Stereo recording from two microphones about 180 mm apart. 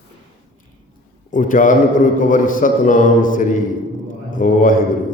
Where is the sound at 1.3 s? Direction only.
45° left (ahead or behind).